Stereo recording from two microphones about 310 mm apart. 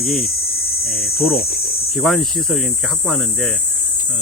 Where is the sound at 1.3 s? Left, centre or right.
Left.